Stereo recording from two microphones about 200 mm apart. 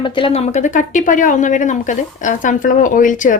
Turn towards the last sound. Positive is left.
turn(degrees=40)  # may be behind; listen again after turning